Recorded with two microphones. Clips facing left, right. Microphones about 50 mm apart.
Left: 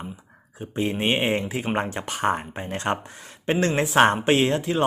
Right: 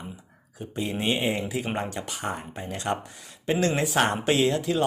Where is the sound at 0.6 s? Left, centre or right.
Left.